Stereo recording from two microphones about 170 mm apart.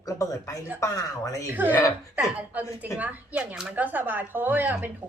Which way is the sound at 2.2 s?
10° right (ahead or behind).